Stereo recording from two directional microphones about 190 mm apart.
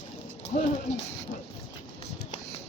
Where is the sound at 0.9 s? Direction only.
75° left (ahead or behind).